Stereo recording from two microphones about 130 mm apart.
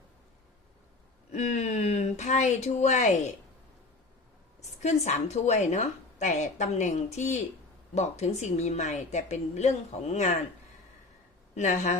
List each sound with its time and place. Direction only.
1.3 s a woman's voice: 60° left (ahead or behind)
4.8 s a woman's voice: 60° left (ahead or behind)
11.5 s speech: 65° left (ahead or behind)